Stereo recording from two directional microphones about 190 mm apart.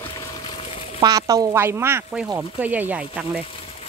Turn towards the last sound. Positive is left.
turn(degrees=-5)  # may be behind; listen again after turning